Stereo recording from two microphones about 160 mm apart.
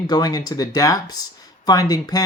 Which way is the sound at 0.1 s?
25° left (ahead or behind).